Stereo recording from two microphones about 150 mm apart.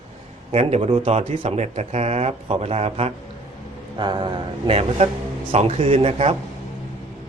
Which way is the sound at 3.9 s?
30° right (ahead or behind).